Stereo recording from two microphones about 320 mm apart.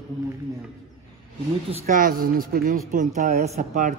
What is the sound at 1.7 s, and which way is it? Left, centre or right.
A man's voice, right.